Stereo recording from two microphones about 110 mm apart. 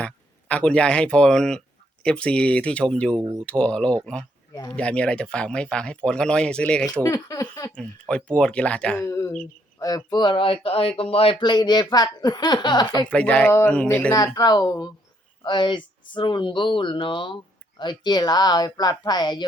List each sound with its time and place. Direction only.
0.0 s speech: 10° left (ahead or behind)
7.1 s a sound: 30° left (ahead or behind)
7.8 s speech: 10° left (ahead or behind)
9.0 s speech: 25° left (ahead or behind)
9.7 s speech: 35° left (ahead or behind)
13.1 s speech: 10° left (ahead or behind)
14.3 s speech: 35° left (ahead or behind)